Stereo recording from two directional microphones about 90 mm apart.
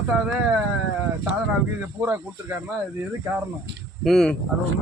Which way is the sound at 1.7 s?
25° right (ahead or behind).